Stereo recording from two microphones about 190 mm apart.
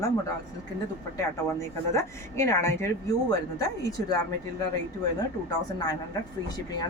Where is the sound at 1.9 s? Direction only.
15° left (ahead or behind).